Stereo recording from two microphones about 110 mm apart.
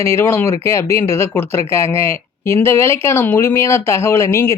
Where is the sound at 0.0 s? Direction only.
25° left (ahead or behind).